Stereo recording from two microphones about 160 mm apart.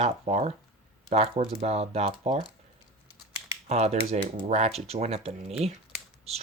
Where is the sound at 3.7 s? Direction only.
45° right (ahead or behind).